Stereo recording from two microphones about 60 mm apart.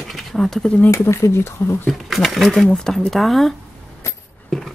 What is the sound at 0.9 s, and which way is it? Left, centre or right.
Speech, left.